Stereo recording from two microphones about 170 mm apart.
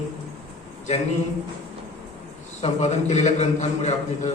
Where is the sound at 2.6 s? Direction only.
45° left (ahead or behind).